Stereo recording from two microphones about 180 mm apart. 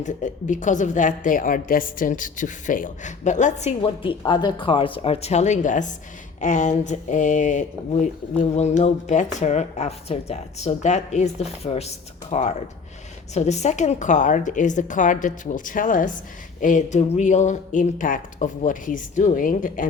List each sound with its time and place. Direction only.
0.0 s a woman's voice: 45° left (ahead or behind)